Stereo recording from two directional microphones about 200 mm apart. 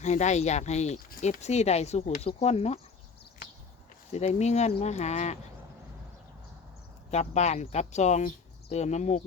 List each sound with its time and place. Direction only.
0.0 s speech: 35° left (ahead or behind)
4.3 s speech: 35° left (ahead or behind)
7.1 s speech: 35° left (ahead or behind)